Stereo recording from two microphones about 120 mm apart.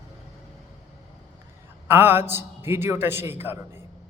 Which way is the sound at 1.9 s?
20° right (ahead or behind).